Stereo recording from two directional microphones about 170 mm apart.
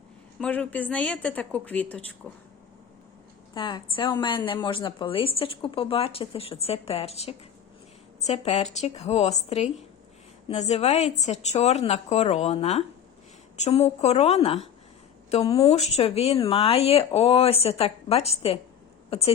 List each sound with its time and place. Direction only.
0.3 s a woman's voice: 5° left (ahead or behind)
3.5 s a woman's voice: 25° left (ahead or behind)